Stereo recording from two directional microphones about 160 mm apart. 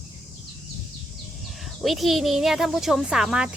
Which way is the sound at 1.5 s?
Centre (ahead or behind).